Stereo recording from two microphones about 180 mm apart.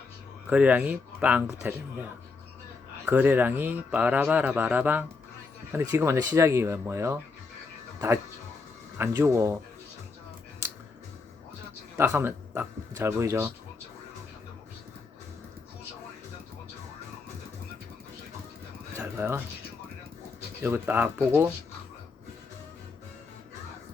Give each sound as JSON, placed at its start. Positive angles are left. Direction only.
{"t": 0.5, "sound": "speech", "side_deg": -5}
{"t": 3.1, "sound": "speech", "side_deg": -10}
{"t": 9.0, "sound": "speech", "side_deg": -15}
{"t": 11.9, "sound": "speech", "side_deg": -10}
{"t": 19.0, "sound": "a sound", "side_deg": -15}
{"t": 20.6, "sound": "speech", "side_deg": -10}